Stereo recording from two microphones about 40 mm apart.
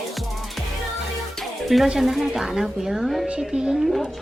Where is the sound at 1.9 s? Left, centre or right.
Centre.